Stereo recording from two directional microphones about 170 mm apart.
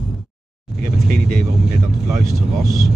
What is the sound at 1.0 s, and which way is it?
Vehicle, 55° right (ahead or behind).